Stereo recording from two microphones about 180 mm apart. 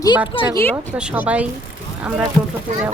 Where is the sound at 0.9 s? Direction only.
5° right (ahead or behind).